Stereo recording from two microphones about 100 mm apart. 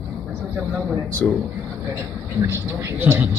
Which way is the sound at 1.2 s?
10° left (ahead or behind).